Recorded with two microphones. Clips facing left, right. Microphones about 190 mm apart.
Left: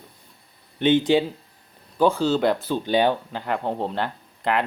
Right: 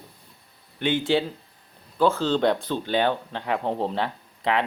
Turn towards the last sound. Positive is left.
turn(degrees=0)  # may be behind; listen again after turning